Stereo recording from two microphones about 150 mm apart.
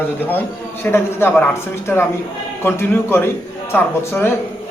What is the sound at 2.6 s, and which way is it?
A man's voice, 15° left (ahead or behind).